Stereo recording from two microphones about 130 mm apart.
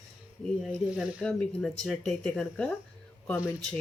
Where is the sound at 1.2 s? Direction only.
5° left (ahead or behind).